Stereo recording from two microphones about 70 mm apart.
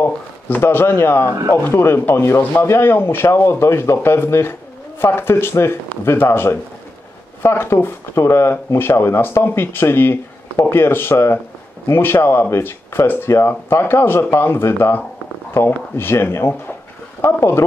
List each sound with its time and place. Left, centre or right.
0.0 s speech: left